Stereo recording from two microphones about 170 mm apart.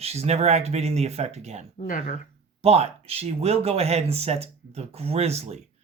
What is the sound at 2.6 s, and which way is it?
Speech, 35° right (ahead or behind).